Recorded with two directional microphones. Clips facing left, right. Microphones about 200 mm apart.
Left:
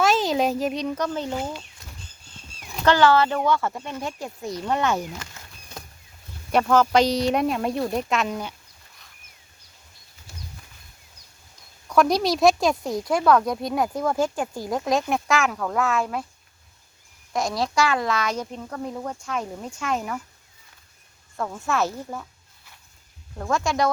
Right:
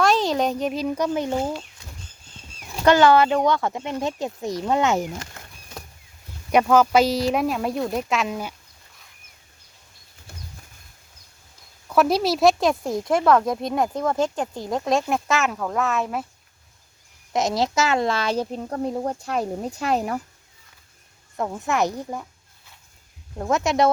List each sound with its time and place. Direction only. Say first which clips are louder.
0.0 s a child's voice: right 1 dB; centre (ahead or behind)
2.8 s speech: right 3 dB; 15° right (ahead or behind)
6.5 s speech: right 2 dB; 10° right (ahead or behind)
11.9 s speech: even; 5° right (ahead or behind)
17.3 s speech: right 2 dB; 20° right (ahead or behind)
21.3 s speech: right 2 dB; 20° right (ahead or behind)
23.4 s speech: right 3 dB; 20° right (ahead or behind)